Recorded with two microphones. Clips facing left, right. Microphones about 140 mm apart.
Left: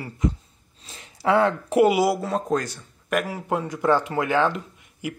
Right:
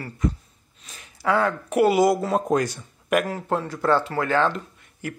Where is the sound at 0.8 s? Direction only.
25° left (ahead or behind).